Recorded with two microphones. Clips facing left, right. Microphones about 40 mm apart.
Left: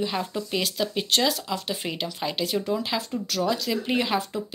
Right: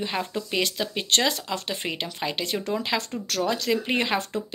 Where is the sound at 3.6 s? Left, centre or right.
Right.